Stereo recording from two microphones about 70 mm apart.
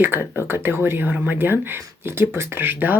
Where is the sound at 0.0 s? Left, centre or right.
Right.